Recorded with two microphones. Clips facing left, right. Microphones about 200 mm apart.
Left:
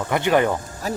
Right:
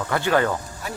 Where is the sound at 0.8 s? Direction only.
40° left (ahead or behind).